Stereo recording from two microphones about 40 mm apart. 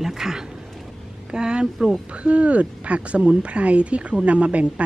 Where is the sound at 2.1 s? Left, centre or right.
Right.